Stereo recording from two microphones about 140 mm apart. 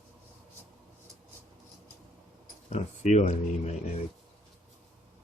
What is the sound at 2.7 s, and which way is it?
Speech, 55° left (ahead or behind).